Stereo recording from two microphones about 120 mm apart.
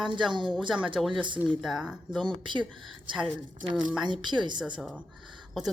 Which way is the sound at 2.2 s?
40° right (ahead or behind).